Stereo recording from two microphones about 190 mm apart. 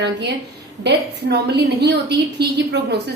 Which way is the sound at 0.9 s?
60° right (ahead or behind).